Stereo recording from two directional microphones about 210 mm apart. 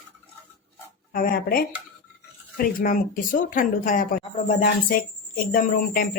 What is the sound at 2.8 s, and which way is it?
Speech, 40° left (ahead or behind).